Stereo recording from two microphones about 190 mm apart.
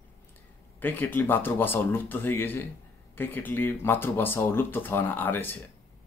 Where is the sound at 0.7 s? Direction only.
10° left (ahead or behind).